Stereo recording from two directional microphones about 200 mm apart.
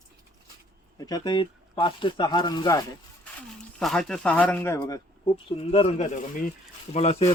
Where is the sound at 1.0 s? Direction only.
20° left (ahead or behind).